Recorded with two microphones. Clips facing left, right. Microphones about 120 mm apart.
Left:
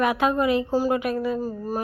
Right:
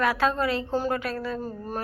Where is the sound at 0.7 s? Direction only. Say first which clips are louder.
Left 4 dB; 5° left (ahead or behind).